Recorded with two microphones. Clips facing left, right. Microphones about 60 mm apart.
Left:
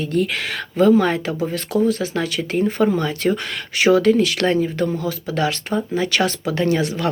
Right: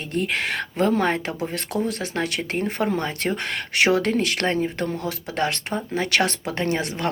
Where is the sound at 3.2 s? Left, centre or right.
Right.